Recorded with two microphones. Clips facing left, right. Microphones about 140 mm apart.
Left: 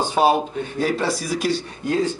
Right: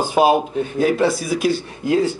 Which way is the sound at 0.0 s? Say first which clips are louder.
Right 3 dB; 10° right (ahead or behind).